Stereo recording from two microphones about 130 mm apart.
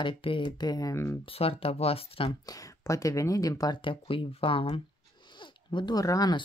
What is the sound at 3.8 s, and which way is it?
Speech, 45° left (ahead or behind).